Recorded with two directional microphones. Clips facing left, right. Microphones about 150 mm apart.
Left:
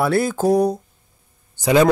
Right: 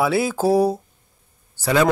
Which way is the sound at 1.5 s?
20° left (ahead or behind).